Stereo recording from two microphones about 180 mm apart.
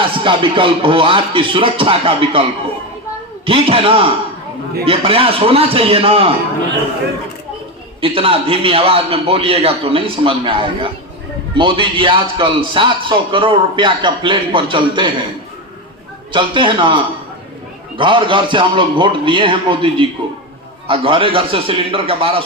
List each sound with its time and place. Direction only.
0.2 s a man's voice: 30° right (ahead or behind)
8.0 s a man's voice: 30° right (ahead or behind)
16.3 s a man's voice: 25° right (ahead or behind)